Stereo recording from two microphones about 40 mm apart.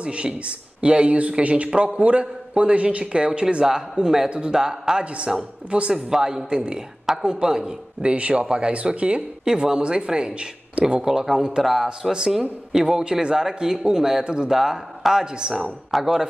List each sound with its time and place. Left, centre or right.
0.0 s a man's voice: right
3.9 s a man's voice: centre
5.7 s a man's voice: right
5.9 s a man's voice: centre
11.6 s speech: centre
14.2 s a man's voice: right
14.5 s speech: centre